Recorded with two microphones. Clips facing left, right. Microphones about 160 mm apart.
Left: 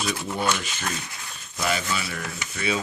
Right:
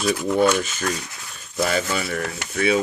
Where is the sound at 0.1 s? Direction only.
50° right (ahead or behind).